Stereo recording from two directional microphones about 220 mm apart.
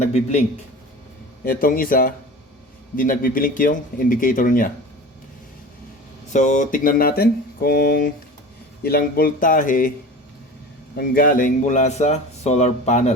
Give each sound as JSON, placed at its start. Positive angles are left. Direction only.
{"t": 0.0, "sound": "a man's voice", "side_deg": 30}
{"t": 1.5, "sound": "a man's voice", "side_deg": 40}
{"t": 6.3, "sound": "a man's voice", "side_deg": 35}
{"t": 10.9, "sound": "a man's voice", "side_deg": 40}